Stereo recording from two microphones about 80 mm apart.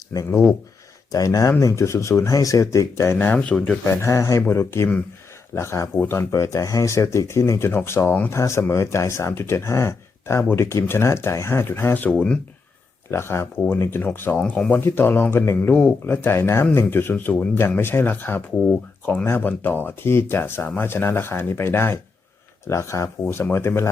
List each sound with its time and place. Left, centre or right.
0.3 s speech: left
1.1 s speech: left
3.2 s speech: centre
3.8 s speech: left
6.3 s speech: left
12.1 s speech: centre
13.1 s speech: left
15.5 s speech: centre
16.0 s speech: left